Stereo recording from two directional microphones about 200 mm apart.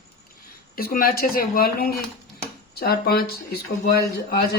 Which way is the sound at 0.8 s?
50° left (ahead or behind).